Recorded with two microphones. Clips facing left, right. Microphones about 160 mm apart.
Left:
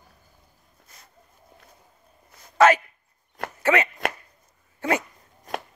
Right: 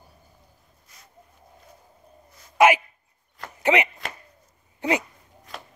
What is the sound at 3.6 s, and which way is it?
Chopping, 15° right (ahead or behind).